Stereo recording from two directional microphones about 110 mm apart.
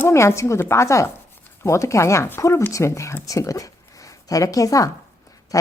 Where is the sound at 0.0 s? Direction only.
25° left (ahead or behind).